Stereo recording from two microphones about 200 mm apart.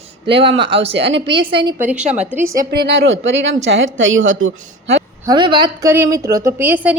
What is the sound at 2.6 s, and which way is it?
A woman's voice, 55° right (ahead or behind).